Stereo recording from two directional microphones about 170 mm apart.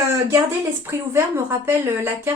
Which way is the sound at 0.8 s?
15° right (ahead or behind).